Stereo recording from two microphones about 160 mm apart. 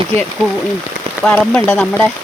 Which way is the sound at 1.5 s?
10° left (ahead or behind).